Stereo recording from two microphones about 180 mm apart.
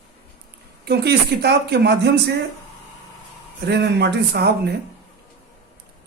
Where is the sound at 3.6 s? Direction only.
70° right (ahead or behind).